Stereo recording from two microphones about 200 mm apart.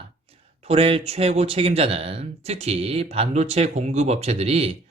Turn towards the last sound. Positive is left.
turn(degrees=-30)  # may be behind; listen again after turning